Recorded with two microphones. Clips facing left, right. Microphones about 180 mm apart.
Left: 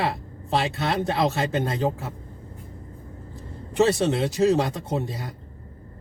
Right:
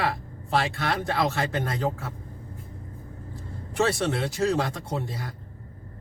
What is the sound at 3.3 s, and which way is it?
Speech, 20° left (ahead or behind).